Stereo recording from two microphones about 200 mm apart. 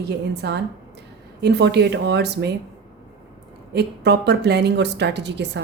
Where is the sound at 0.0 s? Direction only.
55° right (ahead or behind).